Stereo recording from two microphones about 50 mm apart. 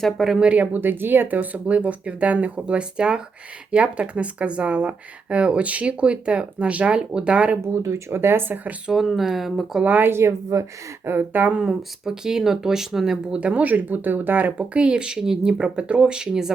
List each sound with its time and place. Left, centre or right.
0.0 s speech: centre
0.3 s speech: right
7.7 s speech: right
8.9 s speech: centre
9.8 s speech: right
10.1 s speech: right
11.0 s speech: right
11.5 s speech: centre
13.3 s speech: right
14.6 s speech: right